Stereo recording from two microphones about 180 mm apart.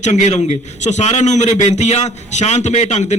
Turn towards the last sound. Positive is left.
turn(degrees=40)  # may be behind; listen again after turning